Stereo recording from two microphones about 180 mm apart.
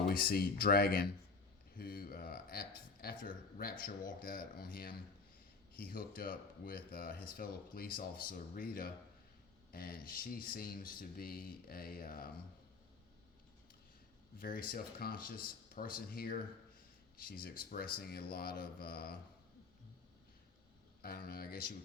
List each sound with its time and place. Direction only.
0.1 s speech: 55° left (ahead or behind)
14.3 s speech: 50° left (ahead or behind)
21.0 s speech: 55° left (ahead or behind)